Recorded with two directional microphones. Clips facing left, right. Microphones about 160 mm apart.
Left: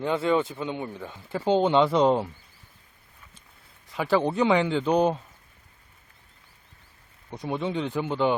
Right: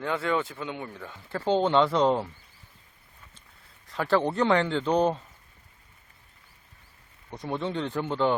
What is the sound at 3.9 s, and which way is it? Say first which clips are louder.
Speech: left 1 dB; 10° left (ahead or behind).